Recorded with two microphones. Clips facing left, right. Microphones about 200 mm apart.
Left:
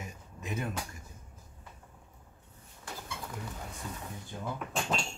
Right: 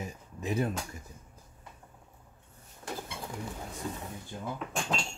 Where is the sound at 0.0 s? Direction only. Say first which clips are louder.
Right 6 dB; 35° right (ahead or behind).